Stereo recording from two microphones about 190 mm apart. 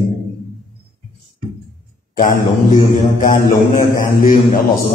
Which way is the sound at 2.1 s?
45° left (ahead or behind).